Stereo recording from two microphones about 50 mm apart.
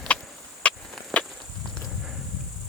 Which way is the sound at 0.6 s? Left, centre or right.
Left.